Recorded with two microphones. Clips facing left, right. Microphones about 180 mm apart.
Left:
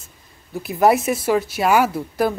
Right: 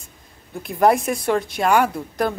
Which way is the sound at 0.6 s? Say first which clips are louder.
Left 1 dB; 5° left (ahead or behind).